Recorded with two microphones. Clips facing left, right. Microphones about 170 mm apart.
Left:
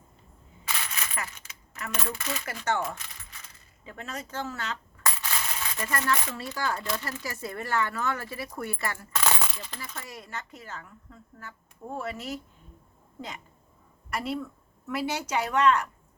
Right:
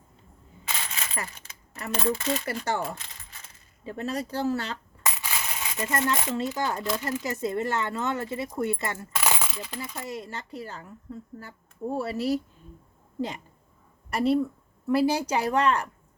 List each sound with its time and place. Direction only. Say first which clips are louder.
0.7 s speech: right 1 dB; 25° right (ahead or behind)
5.1 s speech: even; 15° right (ahead or behind)
9.2 s coin: even; 10° right (ahead or behind)
10.2 s speech: right 5 dB; 30° right (ahead or behind)
14.1 s speech: right 8 dB; 30° right (ahead or behind)